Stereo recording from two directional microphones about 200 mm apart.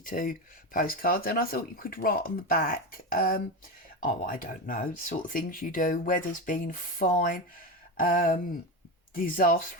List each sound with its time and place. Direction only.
0.0 s speech: 40° left (ahead or behind)